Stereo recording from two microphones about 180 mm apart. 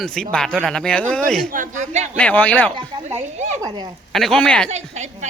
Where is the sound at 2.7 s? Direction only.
35° right (ahead or behind).